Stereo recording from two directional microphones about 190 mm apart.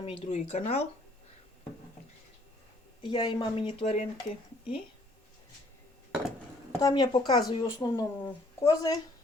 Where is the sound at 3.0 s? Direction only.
25° left (ahead or behind).